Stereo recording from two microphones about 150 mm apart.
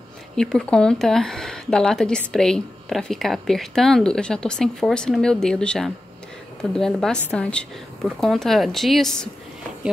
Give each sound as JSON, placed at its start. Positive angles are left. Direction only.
{"t": 0.4, "sound": "speech", "side_deg": 5}